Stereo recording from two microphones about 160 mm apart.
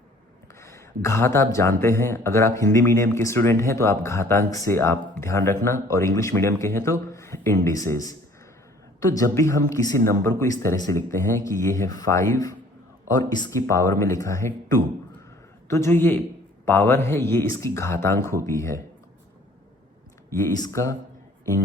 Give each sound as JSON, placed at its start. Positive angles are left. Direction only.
{"t": 0.6, "sound": "speech", "side_deg": 15}
{"t": 9.1, "sound": "speech", "side_deg": 20}
{"t": 20.3, "sound": "speech", "side_deg": 20}